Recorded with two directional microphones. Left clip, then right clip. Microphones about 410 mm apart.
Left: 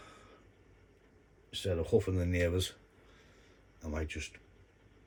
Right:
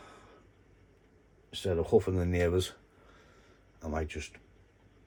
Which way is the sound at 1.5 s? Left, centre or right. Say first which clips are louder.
Right 3 dB; centre.